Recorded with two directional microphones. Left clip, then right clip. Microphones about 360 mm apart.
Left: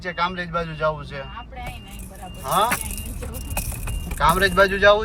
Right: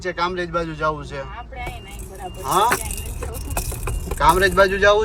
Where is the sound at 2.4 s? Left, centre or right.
Centre.